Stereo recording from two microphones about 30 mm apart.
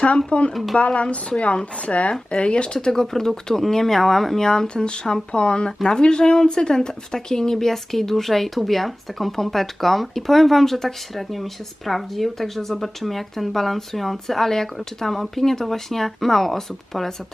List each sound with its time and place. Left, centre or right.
0.3 s speech: left
0.5 s speech: centre
0.8 s speech: left
2.1 s speech: left
2.7 s speech: centre
4.4 s speech: left